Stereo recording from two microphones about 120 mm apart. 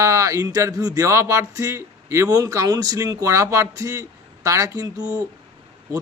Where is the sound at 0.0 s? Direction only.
25° right (ahead or behind).